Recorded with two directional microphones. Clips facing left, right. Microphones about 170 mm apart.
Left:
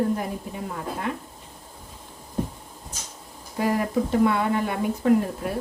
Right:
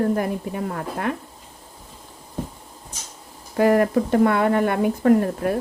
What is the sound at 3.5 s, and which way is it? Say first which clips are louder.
Speech: right 6 dB; 65° right (ahead or behind).